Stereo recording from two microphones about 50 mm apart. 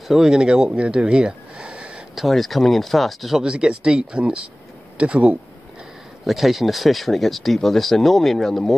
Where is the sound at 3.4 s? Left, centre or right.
Centre.